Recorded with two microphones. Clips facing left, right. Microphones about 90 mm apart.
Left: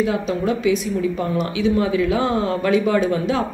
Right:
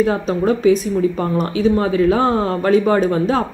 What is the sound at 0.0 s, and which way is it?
Speech, 40° right (ahead or behind).